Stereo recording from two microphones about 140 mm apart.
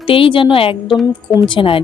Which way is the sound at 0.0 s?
40° left (ahead or behind).